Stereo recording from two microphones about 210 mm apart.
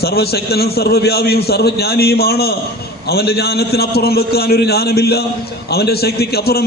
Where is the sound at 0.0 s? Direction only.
50° left (ahead or behind).